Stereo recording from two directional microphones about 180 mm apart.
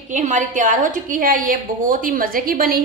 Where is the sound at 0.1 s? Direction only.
45° right (ahead or behind).